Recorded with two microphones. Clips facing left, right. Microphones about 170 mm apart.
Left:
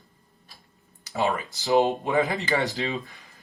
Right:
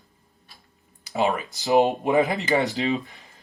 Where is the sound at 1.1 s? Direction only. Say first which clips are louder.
Right 2 dB; 20° right (ahead or behind).